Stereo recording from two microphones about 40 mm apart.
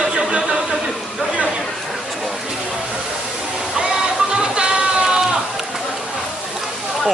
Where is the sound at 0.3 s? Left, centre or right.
Right.